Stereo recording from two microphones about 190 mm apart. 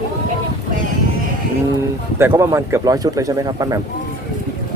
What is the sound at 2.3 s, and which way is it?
Speech, 15° right (ahead or behind).